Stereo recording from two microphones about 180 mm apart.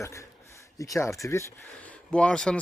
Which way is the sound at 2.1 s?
5° left (ahead or behind).